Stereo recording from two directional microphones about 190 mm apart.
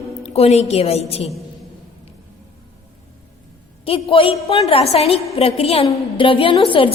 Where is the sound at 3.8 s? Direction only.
30° left (ahead or behind).